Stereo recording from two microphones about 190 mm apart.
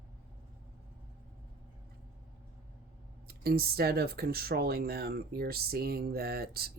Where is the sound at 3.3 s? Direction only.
55° right (ahead or behind).